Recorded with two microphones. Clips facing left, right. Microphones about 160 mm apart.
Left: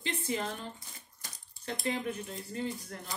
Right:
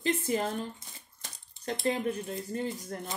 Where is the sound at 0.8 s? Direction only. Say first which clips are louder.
Right 1 dB; 20° right (ahead or behind).